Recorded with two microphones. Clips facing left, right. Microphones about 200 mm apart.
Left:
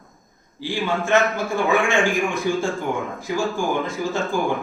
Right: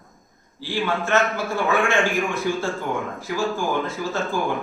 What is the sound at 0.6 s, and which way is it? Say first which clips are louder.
A man's voice: left 1 dB; 15° left (ahead or behind).